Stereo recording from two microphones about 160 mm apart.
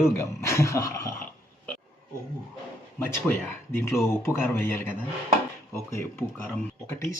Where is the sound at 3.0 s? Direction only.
15° left (ahead or behind).